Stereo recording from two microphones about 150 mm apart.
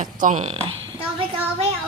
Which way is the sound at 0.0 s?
55° right (ahead or behind).